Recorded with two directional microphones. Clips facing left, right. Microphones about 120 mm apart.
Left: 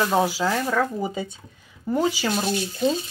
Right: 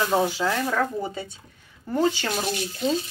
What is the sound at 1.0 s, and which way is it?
Speech, 15° left (ahead or behind).